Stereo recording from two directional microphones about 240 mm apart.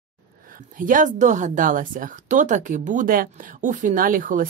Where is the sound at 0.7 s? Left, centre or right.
Right.